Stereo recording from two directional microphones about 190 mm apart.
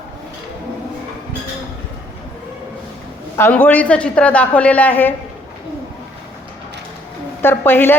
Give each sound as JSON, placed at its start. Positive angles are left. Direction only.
{"t": 3.3, "sound": "a woman's voice", "side_deg": 10}
{"t": 7.4, "sound": "a woman's voice", "side_deg": 10}